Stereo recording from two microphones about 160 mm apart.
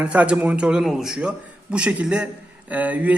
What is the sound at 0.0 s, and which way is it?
A man's voice, 10° right (ahead or behind).